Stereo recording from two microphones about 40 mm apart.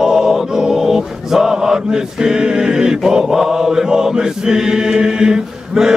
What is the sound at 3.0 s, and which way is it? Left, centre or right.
Chant, centre.